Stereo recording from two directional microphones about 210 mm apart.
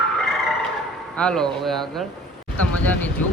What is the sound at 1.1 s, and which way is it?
Speech, 5° left (ahead or behind).